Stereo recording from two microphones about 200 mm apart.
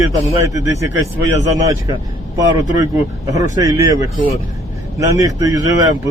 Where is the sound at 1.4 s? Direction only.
15° right (ahead or behind).